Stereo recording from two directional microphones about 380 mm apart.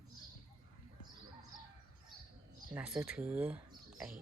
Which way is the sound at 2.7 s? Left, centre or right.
Centre.